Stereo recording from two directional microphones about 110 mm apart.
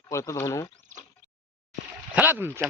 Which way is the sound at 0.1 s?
30° left (ahead or behind).